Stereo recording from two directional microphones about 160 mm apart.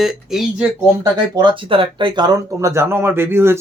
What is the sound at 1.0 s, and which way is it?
Speech, 30° right (ahead or behind).